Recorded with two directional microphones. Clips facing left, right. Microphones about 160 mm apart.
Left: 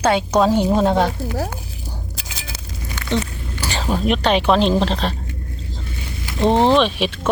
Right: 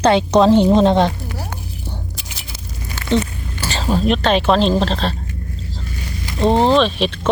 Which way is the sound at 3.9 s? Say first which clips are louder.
Right 2 dB; 10° left (ahead or behind).